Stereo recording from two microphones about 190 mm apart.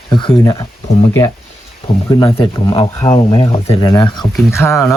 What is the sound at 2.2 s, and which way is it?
Speech, 20° left (ahead or behind).